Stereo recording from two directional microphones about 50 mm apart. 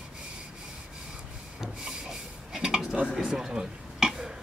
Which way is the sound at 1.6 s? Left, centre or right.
Centre.